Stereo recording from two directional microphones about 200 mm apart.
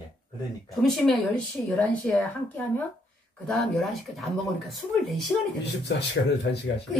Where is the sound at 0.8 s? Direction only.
Centre (ahead or behind).